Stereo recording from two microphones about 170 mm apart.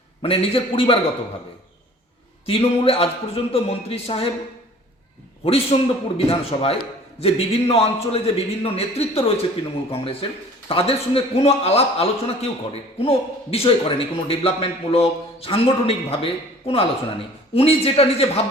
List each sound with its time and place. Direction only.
0.2 s a man's voice: 35° left (ahead or behind)
2.5 s a man's voice: 35° left (ahead or behind)
5.5 s a man's voice: 35° left (ahead or behind)